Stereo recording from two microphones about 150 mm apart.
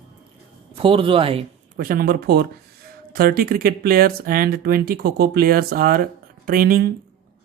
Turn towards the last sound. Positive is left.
turn(degrees=-80)